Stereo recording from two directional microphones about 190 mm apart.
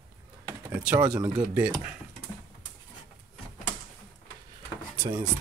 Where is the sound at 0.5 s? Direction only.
10° right (ahead or behind).